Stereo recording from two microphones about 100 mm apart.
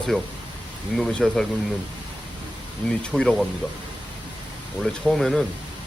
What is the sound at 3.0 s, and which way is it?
Speech, 10° left (ahead or behind).